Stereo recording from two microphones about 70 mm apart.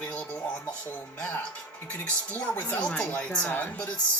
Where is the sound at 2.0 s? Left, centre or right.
Left.